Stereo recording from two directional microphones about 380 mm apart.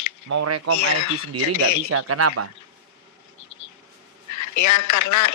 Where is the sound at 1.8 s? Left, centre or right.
Right.